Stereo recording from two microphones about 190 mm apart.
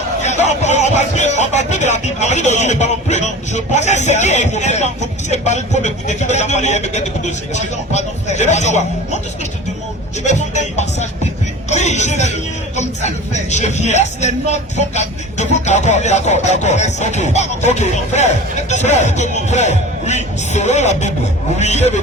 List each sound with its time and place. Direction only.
0.2 s a man's voice: 35° left (ahead or behind)
10.2 s a man's voice: 35° left (ahead or behind)